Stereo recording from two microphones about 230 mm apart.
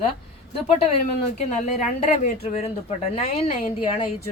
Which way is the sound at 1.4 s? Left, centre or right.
Left.